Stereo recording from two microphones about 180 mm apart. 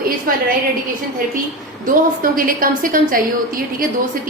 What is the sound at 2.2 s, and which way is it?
Speech, 50° right (ahead or behind).